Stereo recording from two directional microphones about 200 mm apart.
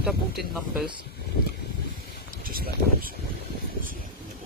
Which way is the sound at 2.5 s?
45° right (ahead or behind).